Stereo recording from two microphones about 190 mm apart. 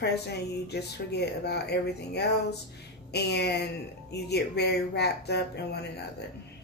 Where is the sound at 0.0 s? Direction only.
60° left (ahead or behind).